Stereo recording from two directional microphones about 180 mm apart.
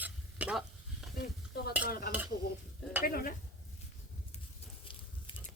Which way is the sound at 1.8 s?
55° left (ahead or behind).